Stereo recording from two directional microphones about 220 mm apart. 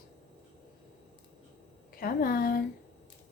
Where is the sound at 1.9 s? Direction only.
40° left (ahead or behind).